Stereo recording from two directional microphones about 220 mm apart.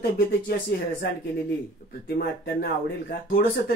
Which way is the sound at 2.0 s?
45° left (ahead or behind).